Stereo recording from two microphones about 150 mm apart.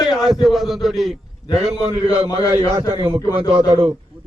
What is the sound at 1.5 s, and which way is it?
Speech, 45° right (ahead or behind).